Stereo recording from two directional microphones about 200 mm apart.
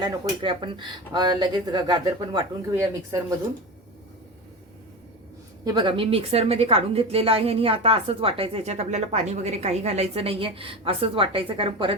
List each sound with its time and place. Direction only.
0.0 s a woman's voice: 25° right (ahead or behind)
5.6 s a woman's voice: 25° right (ahead or behind)